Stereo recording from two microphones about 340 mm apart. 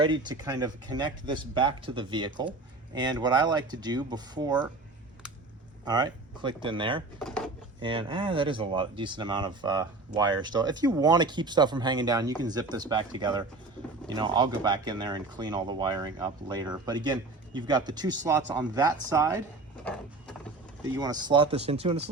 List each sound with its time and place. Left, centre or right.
0.0 s speech: centre
5.8 s speech: centre
7.2 s drawer open or close: centre
7.8 s speech: centre
20.8 s speech: centre